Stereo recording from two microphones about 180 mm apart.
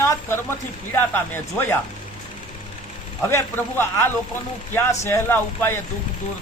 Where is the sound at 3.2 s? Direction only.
15° left (ahead or behind).